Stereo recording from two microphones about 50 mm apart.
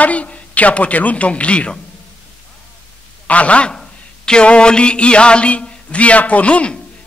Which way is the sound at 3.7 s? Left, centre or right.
Centre.